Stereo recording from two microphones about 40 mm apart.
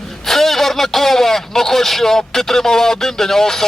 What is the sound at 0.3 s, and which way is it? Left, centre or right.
A man's voice, centre.